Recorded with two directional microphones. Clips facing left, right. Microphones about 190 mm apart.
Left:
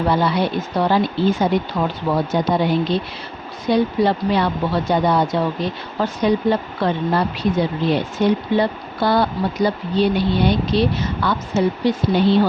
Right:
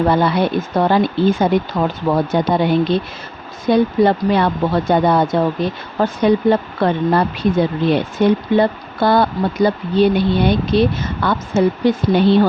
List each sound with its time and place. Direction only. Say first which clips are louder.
0.1 s speech: right 3 dB; 55° right (ahead or behind)